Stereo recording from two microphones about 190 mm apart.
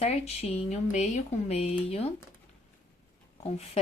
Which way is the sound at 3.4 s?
35° left (ahead or behind).